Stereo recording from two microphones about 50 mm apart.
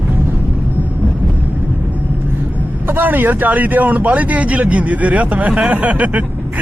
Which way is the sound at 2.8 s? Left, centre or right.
Right.